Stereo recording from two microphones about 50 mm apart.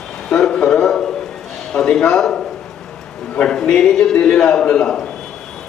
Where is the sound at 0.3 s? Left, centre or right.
Centre.